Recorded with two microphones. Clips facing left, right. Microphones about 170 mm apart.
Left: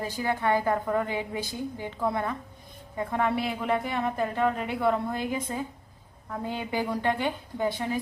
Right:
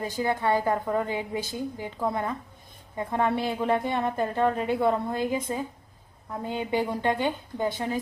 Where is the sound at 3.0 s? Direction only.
25° right (ahead or behind).